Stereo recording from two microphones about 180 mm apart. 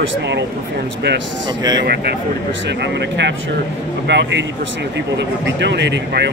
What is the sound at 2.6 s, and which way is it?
Speech, 75° right (ahead or behind).